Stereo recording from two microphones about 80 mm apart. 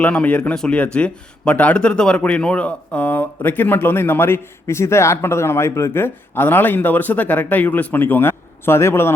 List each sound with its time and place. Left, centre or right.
0.0 s speech: centre; by 9.1 s left